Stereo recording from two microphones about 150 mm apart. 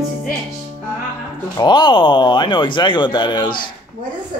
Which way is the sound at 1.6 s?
30° left (ahead or behind).